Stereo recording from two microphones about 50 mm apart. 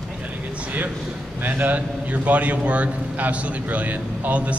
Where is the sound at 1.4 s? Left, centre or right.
Right.